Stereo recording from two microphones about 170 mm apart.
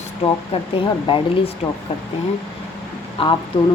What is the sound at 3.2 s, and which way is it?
Speech, 30° left (ahead or behind).